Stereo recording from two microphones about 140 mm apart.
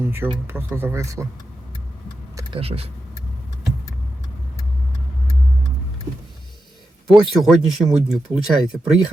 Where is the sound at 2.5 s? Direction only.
45° right (ahead or behind).